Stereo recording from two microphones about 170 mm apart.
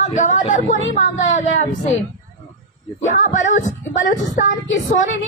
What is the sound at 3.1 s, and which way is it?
A woman's voice, 45° left (ahead or behind).